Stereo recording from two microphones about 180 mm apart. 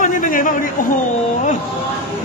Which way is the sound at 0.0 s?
45° left (ahead or behind).